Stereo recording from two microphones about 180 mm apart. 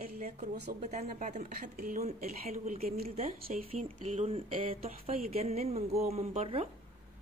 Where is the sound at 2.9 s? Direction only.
35° right (ahead or behind).